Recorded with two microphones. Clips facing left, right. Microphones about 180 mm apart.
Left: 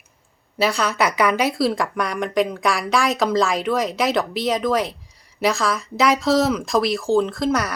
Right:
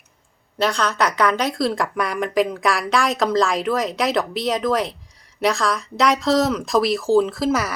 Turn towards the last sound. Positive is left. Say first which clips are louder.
# right 1 dB
turn(degrees=-5)  # may be behind; listen again after turning